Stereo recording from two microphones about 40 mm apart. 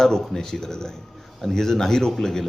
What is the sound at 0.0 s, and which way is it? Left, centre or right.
A man's voice, centre.